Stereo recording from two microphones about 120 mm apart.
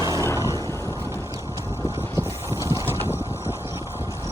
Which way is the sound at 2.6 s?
25° right (ahead or behind).